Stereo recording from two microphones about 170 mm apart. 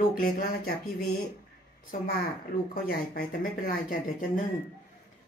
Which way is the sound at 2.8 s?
55° left (ahead or behind).